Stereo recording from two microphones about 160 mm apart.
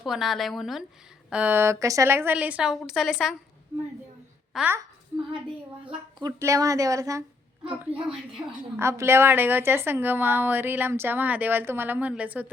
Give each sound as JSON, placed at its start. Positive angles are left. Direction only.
{"t": 0.0, "sound": "a woman's voice", "side_deg": 0}
{"t": 4.5, "sound": "a woman's voice", "side_deg": -10}
{"t": 6.1, "sound": "speech", "side_deg": -20}
{"t": 7.9, "sound": "a woman's voice", "side_deg": -10}